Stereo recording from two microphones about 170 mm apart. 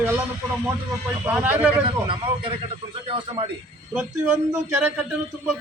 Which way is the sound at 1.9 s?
30° right (ahead or behind).